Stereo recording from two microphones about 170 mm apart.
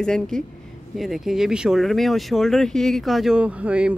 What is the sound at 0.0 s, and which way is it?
Speech, 5° left (ahead or behind).